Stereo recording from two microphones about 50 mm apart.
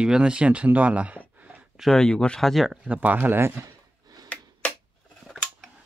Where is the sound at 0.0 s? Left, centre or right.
Centre.